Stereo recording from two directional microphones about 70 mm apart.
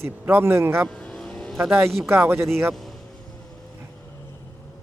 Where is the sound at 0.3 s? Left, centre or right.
Right.